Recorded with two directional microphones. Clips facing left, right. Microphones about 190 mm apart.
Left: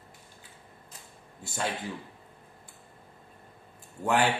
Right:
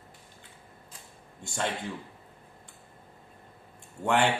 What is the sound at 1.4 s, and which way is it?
Speech, 5° left (ahead or behind).